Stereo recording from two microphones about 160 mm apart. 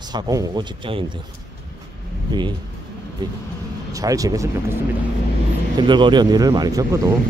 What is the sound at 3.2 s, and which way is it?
Speech, 25° right (ahead or behind).